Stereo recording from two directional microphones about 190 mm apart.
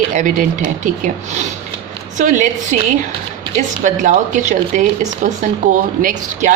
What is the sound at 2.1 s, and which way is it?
Speech, 40° right (ahead or behind).